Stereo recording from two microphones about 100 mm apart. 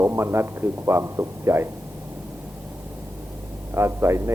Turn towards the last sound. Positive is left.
turn(degrees=-30)  # may be behind; listen again after turning